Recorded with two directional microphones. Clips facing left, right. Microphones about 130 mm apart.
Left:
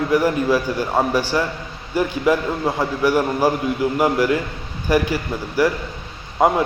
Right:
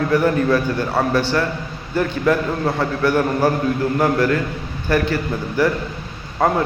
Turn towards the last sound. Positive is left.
turn(degrees=15)  # may be behind; listen again after turning